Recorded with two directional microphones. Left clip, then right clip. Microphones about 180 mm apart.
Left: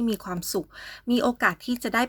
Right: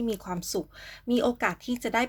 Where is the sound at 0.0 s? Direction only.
30° left (ahead or behind).